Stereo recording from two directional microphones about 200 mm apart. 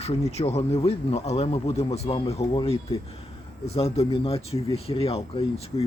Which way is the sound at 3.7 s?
30° left (ahead or behind).